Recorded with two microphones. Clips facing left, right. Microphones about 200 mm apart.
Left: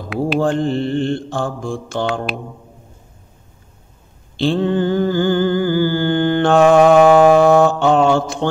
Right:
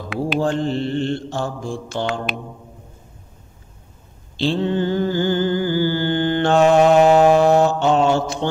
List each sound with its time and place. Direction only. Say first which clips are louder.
0.4 s mantra: left 2 dB; 50° left (ahead or behind)
4.4 s mantra: left 3 dB; 50° left (ahead or behind)